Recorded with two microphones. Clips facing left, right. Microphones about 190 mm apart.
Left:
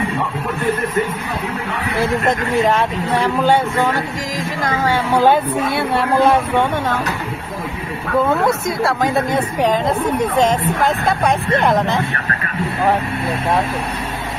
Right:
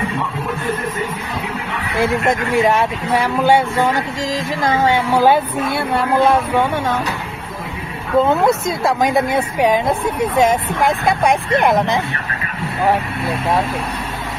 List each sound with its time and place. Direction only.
2.0 s a woman's voice: 10° right (ahead or behind)
4.6 s a woman's voice: 20° right (ahead or behind)
5.1 s speech: 5° right (ahead or behind)
8.5 s a woman's voice: 15° right (ahead or behind)